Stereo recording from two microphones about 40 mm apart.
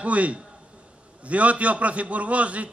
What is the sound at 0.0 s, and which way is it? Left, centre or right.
A man's voice, right.